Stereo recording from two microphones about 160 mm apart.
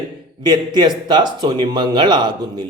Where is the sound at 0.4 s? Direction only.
25° right (ahead or behind).